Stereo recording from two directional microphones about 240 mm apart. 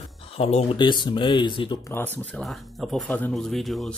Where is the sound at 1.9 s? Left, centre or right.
Centre.